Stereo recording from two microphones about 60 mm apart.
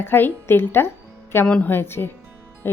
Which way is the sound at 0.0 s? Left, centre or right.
Left.